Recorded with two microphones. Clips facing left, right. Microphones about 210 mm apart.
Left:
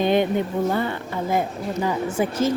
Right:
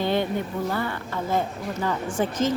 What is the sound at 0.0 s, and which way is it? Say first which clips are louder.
A woman's voice: left 5 dB; 20° left (ahead or behind).